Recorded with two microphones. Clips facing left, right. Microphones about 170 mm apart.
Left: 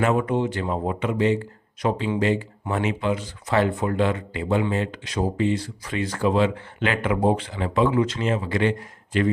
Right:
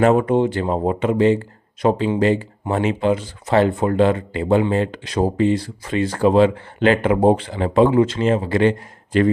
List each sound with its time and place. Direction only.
0.0 s speech: 35° right (ahead or behind)